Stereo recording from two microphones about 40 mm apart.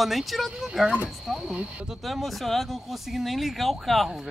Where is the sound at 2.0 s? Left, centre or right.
Centre.